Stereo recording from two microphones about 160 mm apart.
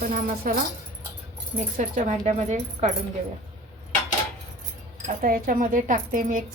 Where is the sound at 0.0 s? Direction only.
60° right (ahead or behind).